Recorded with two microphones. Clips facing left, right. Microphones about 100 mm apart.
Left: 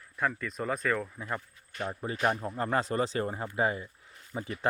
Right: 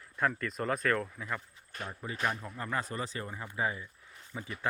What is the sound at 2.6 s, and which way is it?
Speech, 65° left (ahead or behind).